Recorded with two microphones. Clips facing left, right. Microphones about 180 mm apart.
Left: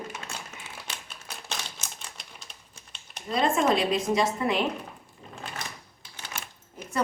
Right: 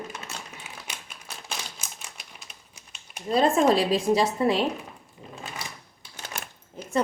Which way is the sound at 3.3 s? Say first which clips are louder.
Right 4 dB; 35° right (ahead or behind).